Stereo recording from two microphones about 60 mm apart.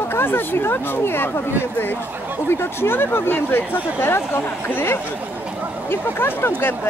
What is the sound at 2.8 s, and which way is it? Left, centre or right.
Speech, left.